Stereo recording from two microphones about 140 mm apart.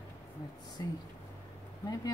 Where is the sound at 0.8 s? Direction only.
30° left (ahead or behind).